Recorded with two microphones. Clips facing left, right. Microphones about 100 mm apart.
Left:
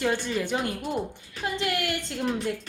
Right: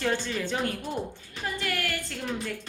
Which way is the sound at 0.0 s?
10° left (ahead or behind).